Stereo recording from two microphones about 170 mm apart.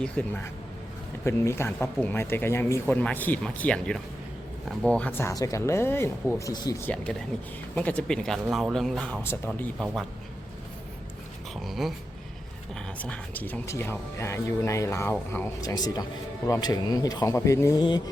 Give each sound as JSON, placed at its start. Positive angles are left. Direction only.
{"t": 0.0, "sound": "speech", "side_deg": 10}
{"t": 11.6, "sound": "speech", "side_deg": 0}
{"t": 13.0, "sound": "speech", "side_deg": 10}